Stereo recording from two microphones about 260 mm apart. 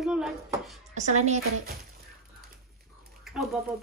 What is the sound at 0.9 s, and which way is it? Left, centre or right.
Speech, right.